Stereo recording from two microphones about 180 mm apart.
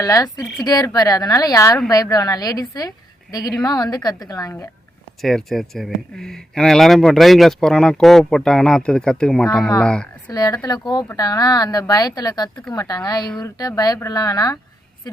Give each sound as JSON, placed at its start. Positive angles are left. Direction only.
{"t": 0.0, "sound": "speech", "side_deg": 20}
{"t": 5.2, "sound": "a woman's voice", "side_deg": 0}
{"t": 10.3, "sound": "speech", "side_deg": 20}